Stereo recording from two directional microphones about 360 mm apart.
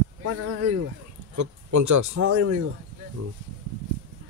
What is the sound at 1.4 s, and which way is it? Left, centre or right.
Speech, right.